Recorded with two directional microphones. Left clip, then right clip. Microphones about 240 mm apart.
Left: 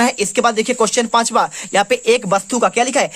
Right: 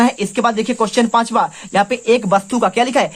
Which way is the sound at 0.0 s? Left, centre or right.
Left.